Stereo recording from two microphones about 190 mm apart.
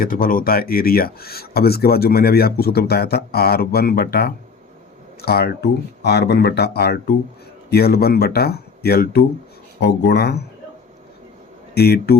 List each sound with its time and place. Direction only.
0.0 s speech: 50° left (ahead or behind)
11.7 s speech: 55° left (ahead or behind)